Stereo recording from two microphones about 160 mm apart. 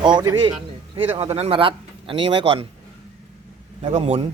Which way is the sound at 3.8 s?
40° right (ahead or behind).